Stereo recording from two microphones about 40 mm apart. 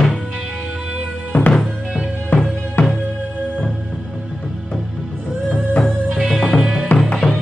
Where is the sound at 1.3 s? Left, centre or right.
Left.